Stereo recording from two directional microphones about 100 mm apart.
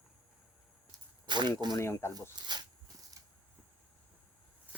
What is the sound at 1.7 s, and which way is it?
Speech, 25° left (ahead or behind).